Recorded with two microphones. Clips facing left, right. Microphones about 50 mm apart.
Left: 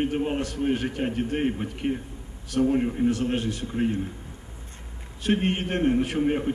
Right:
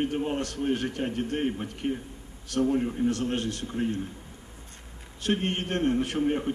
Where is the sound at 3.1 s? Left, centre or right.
Centre.